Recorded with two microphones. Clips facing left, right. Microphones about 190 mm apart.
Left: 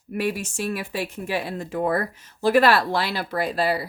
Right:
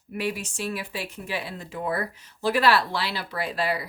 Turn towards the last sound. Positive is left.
turn(degrees=35)  # may be behind; listen again after turning